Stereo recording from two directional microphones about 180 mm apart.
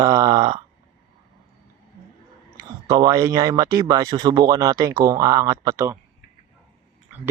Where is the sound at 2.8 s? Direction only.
20° right (ahead or behind).